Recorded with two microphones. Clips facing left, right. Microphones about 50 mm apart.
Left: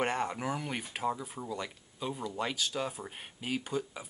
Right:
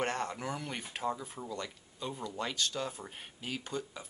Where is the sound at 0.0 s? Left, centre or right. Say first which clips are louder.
Left 3 dB; centre.